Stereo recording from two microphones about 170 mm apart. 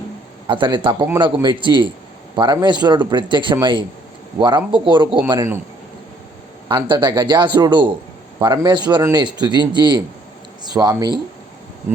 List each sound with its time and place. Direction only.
0.4 s a man's voice: 30° right (ahead or behind)
6.7 s a man's voice: 25° right (ahead or behind)